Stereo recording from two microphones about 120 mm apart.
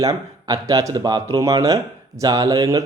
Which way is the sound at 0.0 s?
30° right (ahead or behind).